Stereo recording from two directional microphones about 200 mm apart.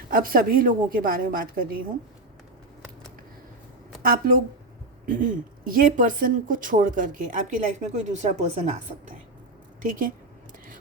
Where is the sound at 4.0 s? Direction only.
45° right (ahead or behind).